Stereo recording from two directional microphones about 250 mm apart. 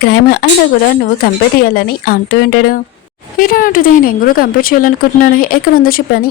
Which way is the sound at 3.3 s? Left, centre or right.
Left.